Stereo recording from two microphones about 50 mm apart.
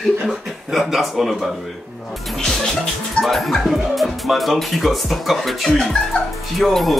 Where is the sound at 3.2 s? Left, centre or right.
Centre.